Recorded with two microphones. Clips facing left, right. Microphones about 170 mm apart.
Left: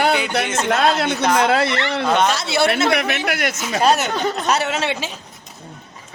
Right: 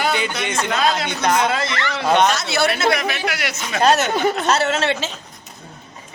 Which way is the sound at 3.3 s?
50° left (ahead or behind).